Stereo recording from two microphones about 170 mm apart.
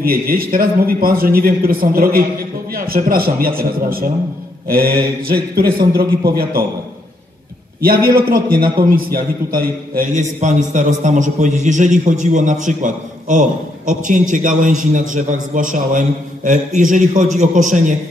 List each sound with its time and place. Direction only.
0.0 s a man's voice: 60° right (ahead or behind)
7.8 s a man's voice: 60° right (ahead or behind)
10.4 s a man's voice: 45° right (ahead or behind)